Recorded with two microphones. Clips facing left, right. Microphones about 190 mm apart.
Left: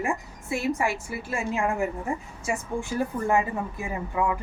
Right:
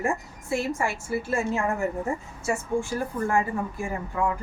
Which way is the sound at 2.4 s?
15° left (ahead or behind).